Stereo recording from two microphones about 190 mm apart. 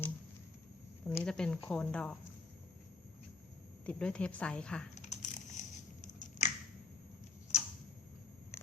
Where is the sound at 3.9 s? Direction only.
5° left (ahead or behind).